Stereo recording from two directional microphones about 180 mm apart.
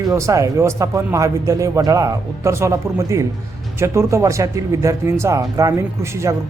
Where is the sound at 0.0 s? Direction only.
20° right (ahead or behind).